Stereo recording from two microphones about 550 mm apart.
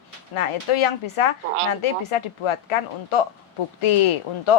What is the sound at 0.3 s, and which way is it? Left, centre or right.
Speech, left.